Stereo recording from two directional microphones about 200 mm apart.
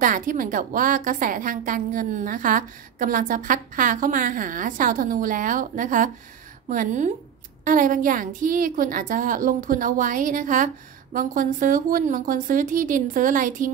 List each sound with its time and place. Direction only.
0.0 s a woman's voice: 40° right (ahead or behind)